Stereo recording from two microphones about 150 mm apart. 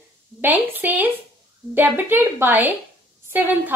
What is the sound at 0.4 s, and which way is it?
A woman's voice, 10° right (ahead or behind).